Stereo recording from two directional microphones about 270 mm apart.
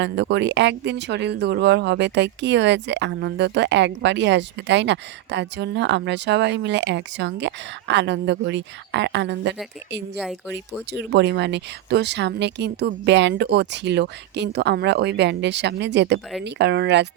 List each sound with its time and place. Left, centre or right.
0.0 s speech: right
10.9 s speech: right